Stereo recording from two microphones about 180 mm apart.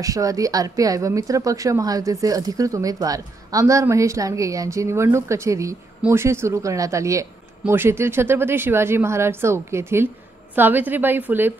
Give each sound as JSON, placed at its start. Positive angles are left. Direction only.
{"t": 0.0, "sound": "speech", "side_deg": -20}